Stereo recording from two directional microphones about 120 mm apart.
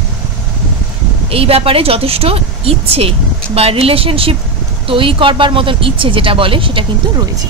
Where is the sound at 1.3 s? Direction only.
50° right (ahead or behind).